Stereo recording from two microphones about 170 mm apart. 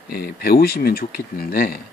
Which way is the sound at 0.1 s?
65° left (ahead or behind).